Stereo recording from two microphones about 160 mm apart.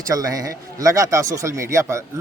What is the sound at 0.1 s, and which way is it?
A man's voice, 20° right (ahead or behind).